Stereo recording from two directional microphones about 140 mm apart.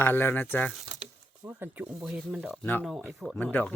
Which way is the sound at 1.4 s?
15° right (ahead or behind).